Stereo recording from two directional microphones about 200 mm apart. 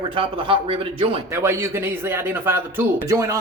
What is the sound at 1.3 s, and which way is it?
A man's voice, 10° right (ahead or behind).